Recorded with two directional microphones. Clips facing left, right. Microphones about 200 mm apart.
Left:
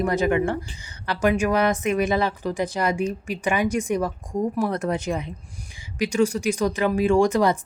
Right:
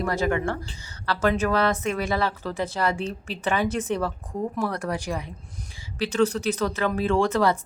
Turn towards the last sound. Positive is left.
turn(degrees=15)  # may be behind; listen again after turning